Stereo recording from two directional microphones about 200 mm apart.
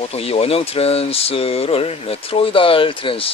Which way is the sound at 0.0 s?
30° left (ahead or behind).